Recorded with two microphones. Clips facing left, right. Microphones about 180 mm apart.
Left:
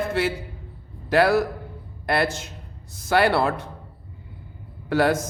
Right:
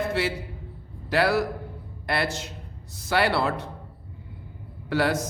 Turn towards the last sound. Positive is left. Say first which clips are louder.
# left 4 dB
turn(degrees=50)  # may be behind; listen again after turning